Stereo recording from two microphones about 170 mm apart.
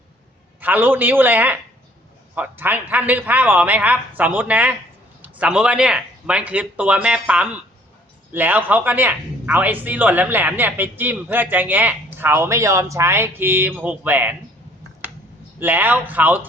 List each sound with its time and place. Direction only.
0.6 s speech: 10° right (ahead or behind)
15.5 s speech: 10° right (ahead or behind)